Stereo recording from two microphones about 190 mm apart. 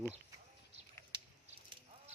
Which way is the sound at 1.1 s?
25° right (ahead or behind).